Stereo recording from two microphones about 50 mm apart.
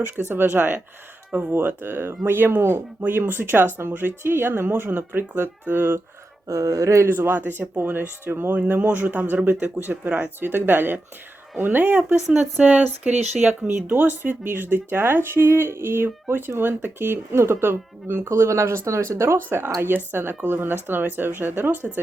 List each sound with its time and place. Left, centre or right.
0.3 s speech: right
1.3 s speech: right
1.5 s speech: right
6.6 s speech: right
7.3 s speech: right
8.5 s speech: right
13.8 s speech: right
16.3 s speech: right
17.3 s speech: right
18.3 s speech: right
19.4 s speech: right